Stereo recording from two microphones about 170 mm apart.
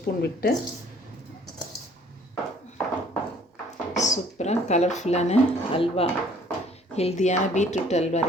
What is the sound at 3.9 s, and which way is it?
Speech, 45° left (ahead or behind).